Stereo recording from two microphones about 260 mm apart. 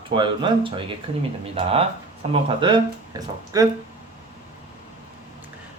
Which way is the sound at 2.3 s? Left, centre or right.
Centre.